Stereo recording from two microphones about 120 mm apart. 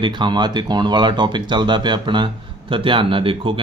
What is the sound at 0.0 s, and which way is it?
Speech, 40° right (ahead or behind).